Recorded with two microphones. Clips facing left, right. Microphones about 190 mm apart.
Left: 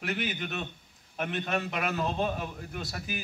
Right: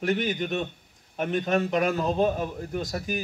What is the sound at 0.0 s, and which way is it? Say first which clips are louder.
A man's voice: right 7 dB; 40° right (ahead or behind).